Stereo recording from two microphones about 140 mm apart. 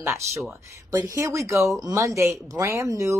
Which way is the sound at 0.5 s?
20° right (ahead or behind).